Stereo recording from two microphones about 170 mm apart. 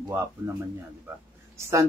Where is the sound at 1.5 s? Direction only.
15° right (ahead or behind).